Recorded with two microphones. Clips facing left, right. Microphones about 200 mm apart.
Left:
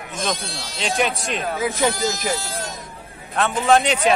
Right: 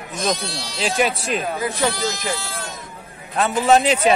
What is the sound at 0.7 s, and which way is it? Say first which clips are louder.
Speech: right 2 dB; centre (ahead or behind).